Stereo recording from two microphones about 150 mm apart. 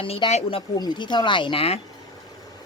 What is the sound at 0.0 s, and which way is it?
Speech, 40° left (ahead or behind).